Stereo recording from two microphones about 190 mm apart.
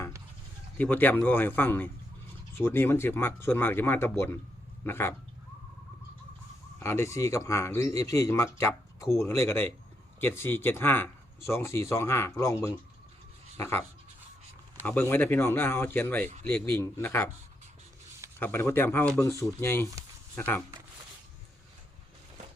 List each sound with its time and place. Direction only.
0.8 s speech: 10° left (ahead or behind)
6.7 s speech: 15° left (ahead or behind)
18.3 s speech: 10° left (ahead or behind)